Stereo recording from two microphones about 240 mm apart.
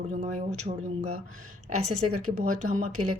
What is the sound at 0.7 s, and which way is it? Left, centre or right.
Speech, right.